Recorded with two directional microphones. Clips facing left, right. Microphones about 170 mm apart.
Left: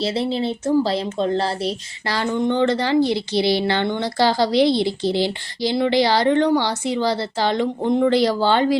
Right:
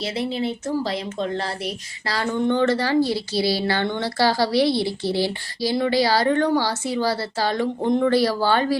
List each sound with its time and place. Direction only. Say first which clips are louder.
0.0 s a woman's voice: left 3 dB; 30° left (ahead or behind)